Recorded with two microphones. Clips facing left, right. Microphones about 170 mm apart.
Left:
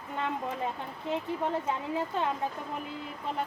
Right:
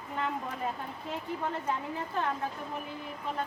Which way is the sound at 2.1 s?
25° left (ahead or behind).